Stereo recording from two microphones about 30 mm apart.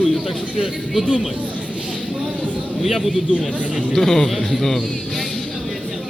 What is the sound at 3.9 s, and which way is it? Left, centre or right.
Speech, centre.